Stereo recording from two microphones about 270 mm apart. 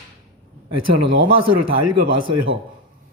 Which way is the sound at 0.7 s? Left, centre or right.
Right.